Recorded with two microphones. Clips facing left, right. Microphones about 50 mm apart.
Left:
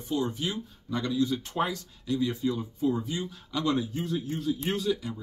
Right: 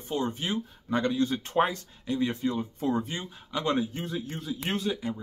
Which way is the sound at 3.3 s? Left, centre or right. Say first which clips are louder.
Right 1 dB; right.